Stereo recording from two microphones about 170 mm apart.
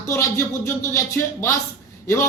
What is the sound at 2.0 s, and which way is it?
Speech, 15° left (ahead or behind).